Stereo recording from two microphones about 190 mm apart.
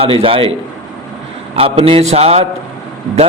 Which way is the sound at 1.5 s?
30° right (ahead or behind).